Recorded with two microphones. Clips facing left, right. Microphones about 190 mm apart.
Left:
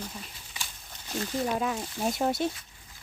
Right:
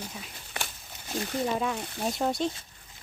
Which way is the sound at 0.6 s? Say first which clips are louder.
Right 7 dB; 60° right (ahead or behind).